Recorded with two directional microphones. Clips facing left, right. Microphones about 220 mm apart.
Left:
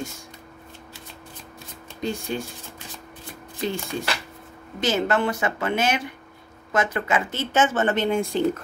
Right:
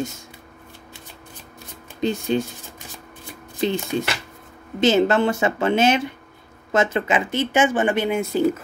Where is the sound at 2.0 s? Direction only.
25° right (ahead or behind).